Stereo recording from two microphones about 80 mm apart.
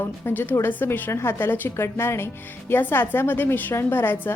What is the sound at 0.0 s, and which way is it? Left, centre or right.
A woman's voice, left.